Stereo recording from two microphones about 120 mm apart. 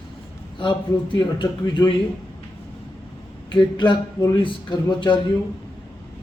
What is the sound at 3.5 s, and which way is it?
Speech, 40° left (ahead or behind).